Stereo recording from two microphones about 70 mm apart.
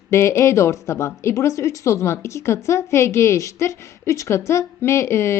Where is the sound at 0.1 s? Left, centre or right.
Left.